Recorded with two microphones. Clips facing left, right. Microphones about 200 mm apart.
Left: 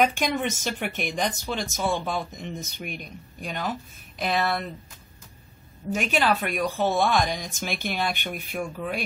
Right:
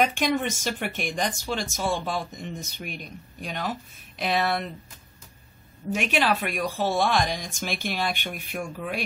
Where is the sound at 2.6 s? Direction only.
50° left (ahead or behind).